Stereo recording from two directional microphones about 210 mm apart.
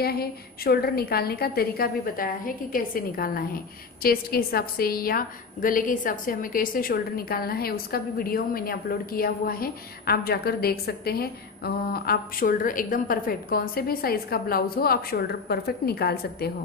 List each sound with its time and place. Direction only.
0.0 s a woman's voice: 45° left (ahead or behind)